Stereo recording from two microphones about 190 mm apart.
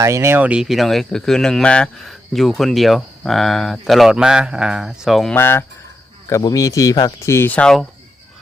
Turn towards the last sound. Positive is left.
turn(degrees=5)  # may be behind; listen again after turning